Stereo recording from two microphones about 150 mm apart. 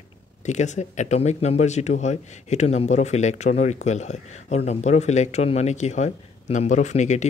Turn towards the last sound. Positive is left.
turn(degrees=50)  # may be behind; listen again after turning